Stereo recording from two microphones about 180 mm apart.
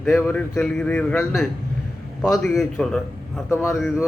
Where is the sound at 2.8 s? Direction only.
5° left (ahead or behind).